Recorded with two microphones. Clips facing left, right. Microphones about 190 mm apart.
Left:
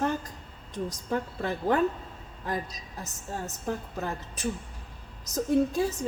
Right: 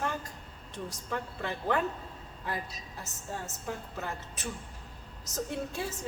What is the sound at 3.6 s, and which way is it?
A woman's voice, 35° left (ahead or behind).